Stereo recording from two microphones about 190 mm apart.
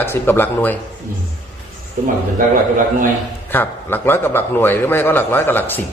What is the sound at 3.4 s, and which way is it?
A man's voice, 10° left (ahead or behind).